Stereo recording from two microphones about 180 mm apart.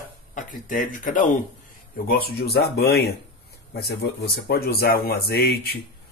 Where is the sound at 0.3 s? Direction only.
45° left (ahead or behind).